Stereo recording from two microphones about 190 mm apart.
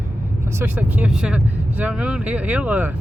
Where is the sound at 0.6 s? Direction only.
10° right (ahead or behind).